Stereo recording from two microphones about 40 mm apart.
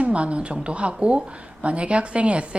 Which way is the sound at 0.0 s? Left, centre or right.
Right.